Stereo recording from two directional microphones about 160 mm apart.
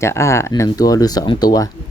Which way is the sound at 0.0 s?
15° left (ahead or behind).